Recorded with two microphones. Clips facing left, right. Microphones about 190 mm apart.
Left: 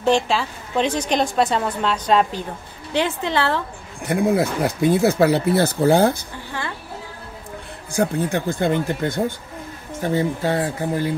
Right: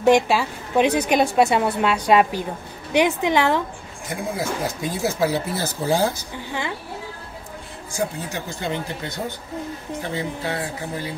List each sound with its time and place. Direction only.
0.0 s a woman's voice: 10° right (ahead or behind)
4.0 s speech: 65° left (ahead or behind)
7.9 s speech: 60° left (ahead or behind)